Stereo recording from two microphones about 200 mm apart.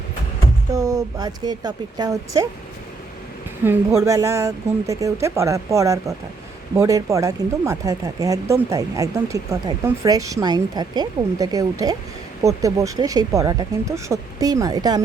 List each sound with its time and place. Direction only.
0.7 s speech: 15° right (ahead or behind)
3.6 s speech: 15° right (ahead or behind)